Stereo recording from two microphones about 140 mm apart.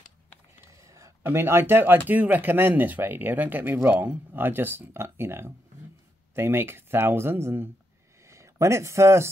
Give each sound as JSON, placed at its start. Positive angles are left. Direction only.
{"t": 0.8, "sound": "speech", "side_deg": -20}